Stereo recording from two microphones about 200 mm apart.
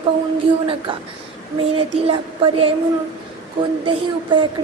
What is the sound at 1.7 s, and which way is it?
Speech, 25° right (ahead or behind).